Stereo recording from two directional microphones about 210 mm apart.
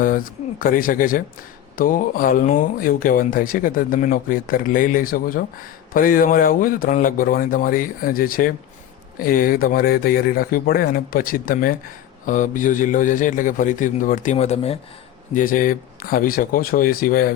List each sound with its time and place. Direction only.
0.0 s speech: 40° left (ahead or behind)